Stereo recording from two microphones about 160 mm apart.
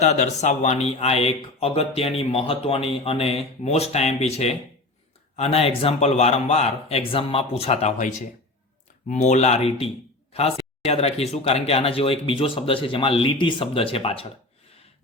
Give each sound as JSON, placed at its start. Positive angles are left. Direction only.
{"t": 0.0, "sound": "speech", "side_deg": 45}